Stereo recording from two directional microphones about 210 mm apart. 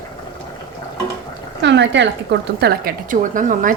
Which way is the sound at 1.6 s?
55° right (ahead or behind).